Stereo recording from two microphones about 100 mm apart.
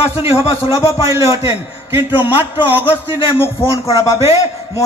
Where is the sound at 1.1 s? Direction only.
30° right (ahead or behind).